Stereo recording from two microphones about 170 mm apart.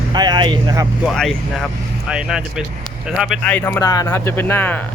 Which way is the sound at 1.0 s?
5° left (ahead or behind).